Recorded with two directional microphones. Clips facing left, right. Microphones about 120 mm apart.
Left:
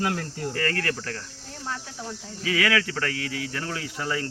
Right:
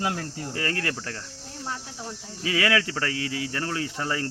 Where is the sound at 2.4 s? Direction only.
25° right (ahead or behind).